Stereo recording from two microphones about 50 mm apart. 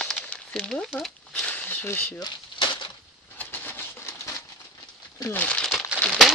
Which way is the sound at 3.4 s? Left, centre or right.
Left.